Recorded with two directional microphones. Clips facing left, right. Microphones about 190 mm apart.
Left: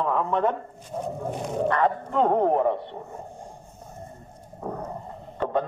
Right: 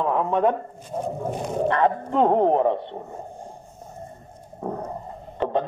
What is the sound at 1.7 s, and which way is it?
A man's voice, 25° right (ahead or behind).